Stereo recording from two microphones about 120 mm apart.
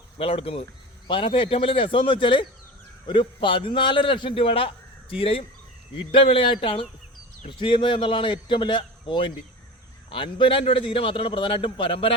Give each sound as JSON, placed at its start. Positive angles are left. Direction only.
{"t": 0.2, "sound": "a man's voice", "side_deg": 50}